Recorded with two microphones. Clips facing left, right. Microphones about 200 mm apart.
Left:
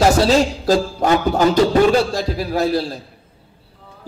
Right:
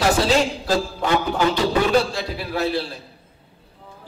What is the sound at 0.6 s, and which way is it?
Speech, 40° left (ahead or behind).